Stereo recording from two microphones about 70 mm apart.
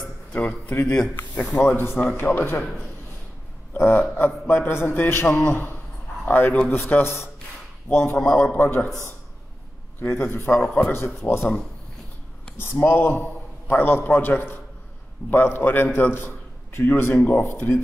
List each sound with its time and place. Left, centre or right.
0.0 s a sound: left
0.8 s a man's voice: centre
1.1 s a man's voice: left
3.7 s a man's voice: left
8.2 s a man's voice: centre
8.5 s a man's voice: left
10.0 s a man's voice: left
10.6 s a man's voice: centre
12.5 s a man's voice: left